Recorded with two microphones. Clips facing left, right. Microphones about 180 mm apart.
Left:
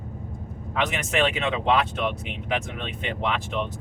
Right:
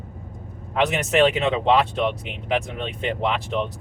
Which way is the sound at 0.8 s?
35° right (ahead or behind).